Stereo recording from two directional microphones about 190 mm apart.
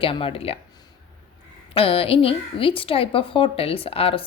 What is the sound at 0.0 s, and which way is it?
Speech, 30° left (ahead or behind).